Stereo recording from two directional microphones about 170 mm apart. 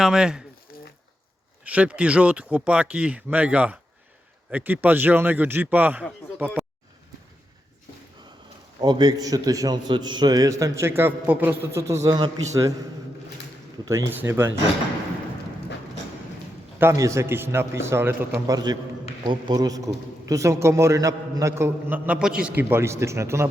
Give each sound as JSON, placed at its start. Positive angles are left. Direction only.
{"t": 0.0, "sound": "speech", "side_deg": -5}
{"t": 0.7, "sound": "a sound", "side_deg": 60}
{"t": 1.6, "sound": "a man's voice", "side_deg": -5}
{"t": 6.4, "sound": "a sound", "side_deg": -10}
{"t": 8.8, "sound": "a man's voice", "side_deg": -25}
{"t": 13.8, "sound": "a man's voice", "side_deg": -15}
{"t": 16.8, "sound": "a man's voice", "side_deg": -15}